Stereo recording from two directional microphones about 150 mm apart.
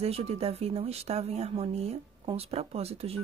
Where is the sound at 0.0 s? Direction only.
45° right (ahead or behind).